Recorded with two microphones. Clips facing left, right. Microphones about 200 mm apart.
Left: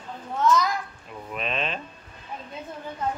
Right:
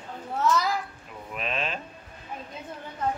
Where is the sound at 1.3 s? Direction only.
5° right (ahead or behind).